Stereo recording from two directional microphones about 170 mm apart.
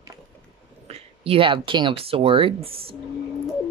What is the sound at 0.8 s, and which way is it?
Speech, 35° right (ahead or behind).